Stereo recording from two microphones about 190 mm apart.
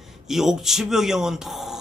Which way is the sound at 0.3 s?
Centre (ahead or behind).